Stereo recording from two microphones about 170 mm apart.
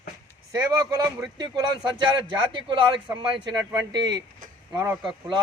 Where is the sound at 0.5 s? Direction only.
25° right (ahead or behind).